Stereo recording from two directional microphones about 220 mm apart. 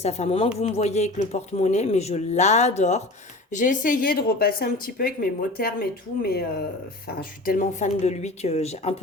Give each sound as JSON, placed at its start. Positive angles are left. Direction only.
{"t": 0.0, "sound": "speech", "side_deg": 30}